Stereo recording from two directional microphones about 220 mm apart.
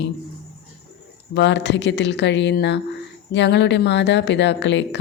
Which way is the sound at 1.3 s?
50° left (ahead or behind).